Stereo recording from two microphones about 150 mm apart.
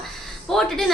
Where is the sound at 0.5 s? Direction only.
5° left (ahead or behind).